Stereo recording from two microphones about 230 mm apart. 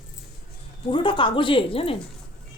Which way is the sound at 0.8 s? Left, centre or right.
Left.